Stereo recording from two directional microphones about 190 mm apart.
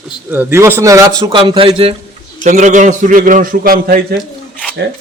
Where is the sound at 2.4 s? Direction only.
40° right (ahead or behind).